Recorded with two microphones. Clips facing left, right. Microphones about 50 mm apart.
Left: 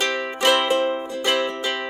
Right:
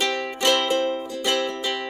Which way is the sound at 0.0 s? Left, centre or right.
Centre.